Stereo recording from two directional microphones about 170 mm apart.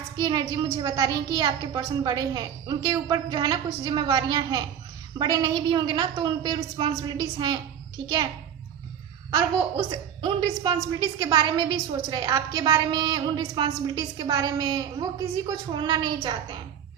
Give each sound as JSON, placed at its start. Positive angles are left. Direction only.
{"t": 0.2, "sound": "a woman's voice", "side_deg": -25}
{"t": 9.3, "sound": "a woman's voice", "side_deg": -30}